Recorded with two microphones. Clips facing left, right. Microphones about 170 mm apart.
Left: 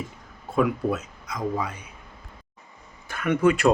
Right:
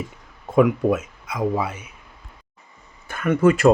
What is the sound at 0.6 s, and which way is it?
Speech, 10° right (ahead or behind).